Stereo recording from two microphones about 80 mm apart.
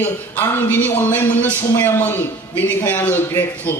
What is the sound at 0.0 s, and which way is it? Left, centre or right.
A man's voice, left.